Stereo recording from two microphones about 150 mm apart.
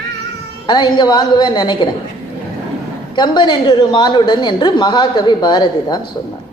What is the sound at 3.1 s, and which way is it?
A woman's voice, 30° left (ahead or behind).